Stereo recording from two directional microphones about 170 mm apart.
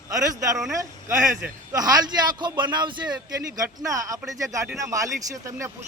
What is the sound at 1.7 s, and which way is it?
A man's voice, 20° right (ahead or behind).